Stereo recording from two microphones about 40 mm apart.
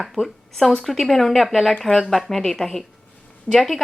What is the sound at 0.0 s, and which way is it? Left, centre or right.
A woman's voice, centre.